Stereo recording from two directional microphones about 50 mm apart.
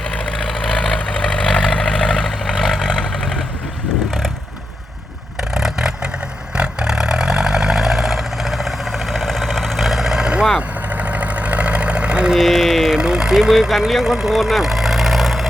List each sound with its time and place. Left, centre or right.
0.1 s vehicle: centre
5.5 s vehicle: centre
10.8 s sewing machine: right
12.3 s mantra: centre
13.0 s vehicle: centre